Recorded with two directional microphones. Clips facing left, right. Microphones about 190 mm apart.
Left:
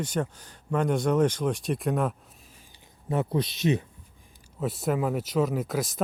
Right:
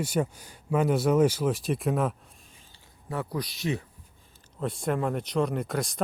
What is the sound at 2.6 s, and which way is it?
Speech, 15° left (ahead or behind).